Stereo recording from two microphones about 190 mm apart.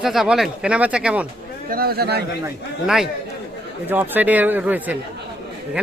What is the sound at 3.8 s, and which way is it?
A man's voice, 10° right (ahead or behind).